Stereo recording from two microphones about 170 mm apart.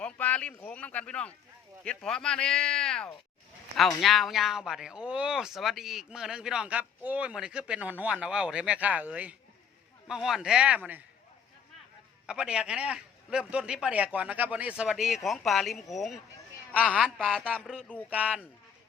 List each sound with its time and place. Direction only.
0.0 s speech: 10° left (ahead or behind); by 11.0 s 10° right (ahead or behind)
12.2 s a man's voice: 5° right (ahead or behind)
18.1 s speech: 5° right (ahead or behind)